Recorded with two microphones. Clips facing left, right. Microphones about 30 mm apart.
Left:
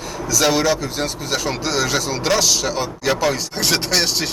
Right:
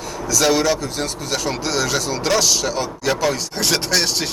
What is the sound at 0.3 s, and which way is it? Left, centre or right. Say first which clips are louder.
Speech: even; centre.